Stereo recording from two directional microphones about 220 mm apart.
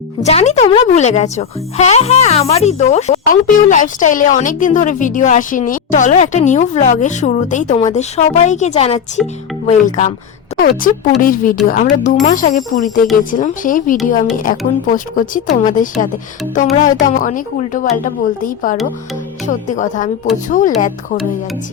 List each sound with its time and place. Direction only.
0.2 s speech: 30° left (ahead or behind)
9.2 s speech: centre (ahead or behind)
9.6 s speech: 35° left (ahead or behind)